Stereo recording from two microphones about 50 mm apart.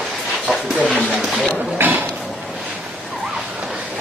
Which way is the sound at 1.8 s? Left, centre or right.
Right.